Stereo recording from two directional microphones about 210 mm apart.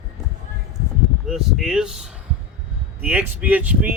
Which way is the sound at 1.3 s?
Centre (ahead or behind).